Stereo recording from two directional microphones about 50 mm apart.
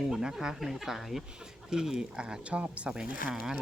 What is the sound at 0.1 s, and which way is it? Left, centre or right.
Speech, centre.